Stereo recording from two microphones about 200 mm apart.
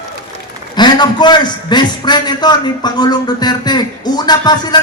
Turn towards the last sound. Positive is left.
turn(degrees=20)  # may be behind; listen again after turning